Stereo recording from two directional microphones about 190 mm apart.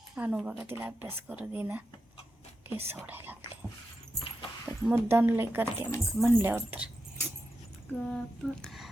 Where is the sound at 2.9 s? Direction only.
10° right (ahead or behind).